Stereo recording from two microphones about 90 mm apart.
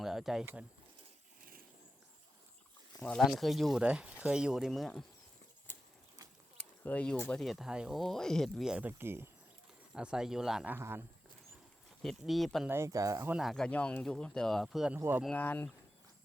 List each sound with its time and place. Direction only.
0.0 s a sound: 5° right (ahead or behind)
3.0 s speech: 10° left (ahead or behind)
3.2 s speech: centre (ahead or behind)
3.8 s speech: 10° right (ahead or behind); by 5.0 s 5° left (ahead or behind)
6.8 s speech: 10° left (ahead or behind)
8.8 s speech: 25° right (ahead or behind)
9.9 s speech: 10° right (ahead or behind)
10.7 s speech: 25° right (ahead or behind)
12.0 s speech: centre (ahead or behind)
12.6 s speech: 30° right (ahead or behind)
13.3 s speech: 5° right (ahead or behind)
13.6 s speech: 15° left (ahead or behind); by 14.9 s centre (ahead or behind)
14.9 s speech: 30° right (ahead or behind)
15.3 s speech: 20° left (ahead or behind)